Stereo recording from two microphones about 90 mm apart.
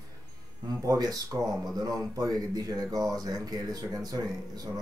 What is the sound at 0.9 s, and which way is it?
Mantra, 45° right (ahead or behind).